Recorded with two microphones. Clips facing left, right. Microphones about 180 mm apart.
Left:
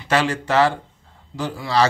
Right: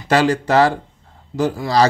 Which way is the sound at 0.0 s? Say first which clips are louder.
Right 5 dB; 40° right (ahead or behind).